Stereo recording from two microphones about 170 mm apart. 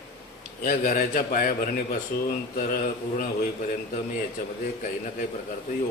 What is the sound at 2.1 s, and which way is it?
Speech, 65° left (ahead or behind).